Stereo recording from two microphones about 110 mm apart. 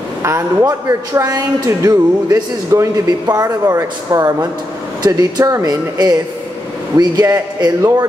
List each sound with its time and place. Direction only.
0.2 s a man's voice: 25° right (ahead or behind)